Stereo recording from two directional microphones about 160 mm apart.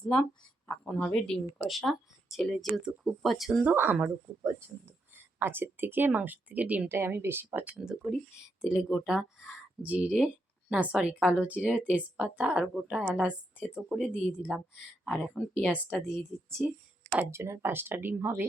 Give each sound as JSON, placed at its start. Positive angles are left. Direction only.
{"t": 0.0, "sound": "speech", "side_deg": 5}
{"t": 5.1, "sound": "speech", "side_deg": -15}
{"t": 13.6, "sound": "speech", "side_deg": 10}